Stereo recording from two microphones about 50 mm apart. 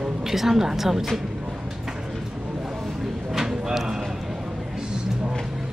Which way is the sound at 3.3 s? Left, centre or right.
Centre.